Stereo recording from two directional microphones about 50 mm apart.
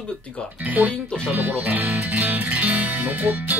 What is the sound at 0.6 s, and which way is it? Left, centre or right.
Speech, right.